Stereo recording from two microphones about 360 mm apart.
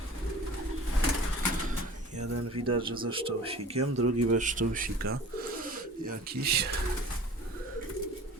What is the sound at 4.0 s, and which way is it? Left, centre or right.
Speech, right.